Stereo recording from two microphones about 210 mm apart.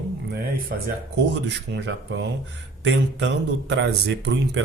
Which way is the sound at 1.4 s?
60° right (ahead or behind).